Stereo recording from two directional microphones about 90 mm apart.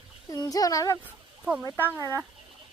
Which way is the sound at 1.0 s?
10° right (ahead or behind).